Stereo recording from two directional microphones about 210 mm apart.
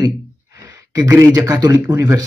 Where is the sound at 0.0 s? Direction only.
15° right (ahead or behind).